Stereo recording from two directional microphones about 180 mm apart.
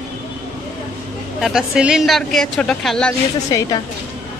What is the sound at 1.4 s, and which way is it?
Speech, centre (ahead or behind).